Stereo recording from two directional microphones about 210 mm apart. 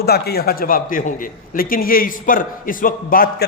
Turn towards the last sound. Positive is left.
turn(degrees=45)  # may be behind; listen again after turning